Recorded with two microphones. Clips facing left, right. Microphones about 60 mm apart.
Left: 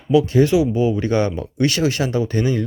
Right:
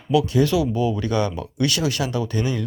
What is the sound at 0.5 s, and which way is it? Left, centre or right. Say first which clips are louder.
Speech: left 4 dB; left.